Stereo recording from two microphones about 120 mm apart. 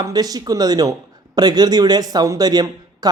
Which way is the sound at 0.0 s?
30° right (ahead or behind).